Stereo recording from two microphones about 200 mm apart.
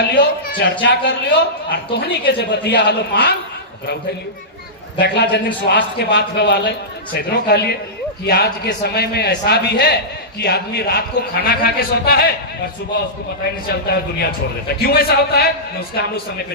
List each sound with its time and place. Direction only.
0.2 s a man's voice: 55° left (ahead or behind)
4.9 s a man's voice: 55° left (ahead or behind)
13.7 s a man's voice: 50° left (ahead or behind)